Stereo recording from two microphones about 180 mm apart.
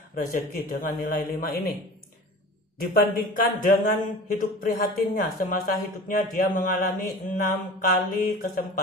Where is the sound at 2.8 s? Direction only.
50° left (ahead or behind).